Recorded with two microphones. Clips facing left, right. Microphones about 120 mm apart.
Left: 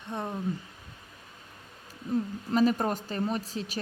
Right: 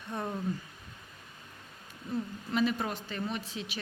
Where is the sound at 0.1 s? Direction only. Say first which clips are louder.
Left 1 dB; 20° left (ahead or behind).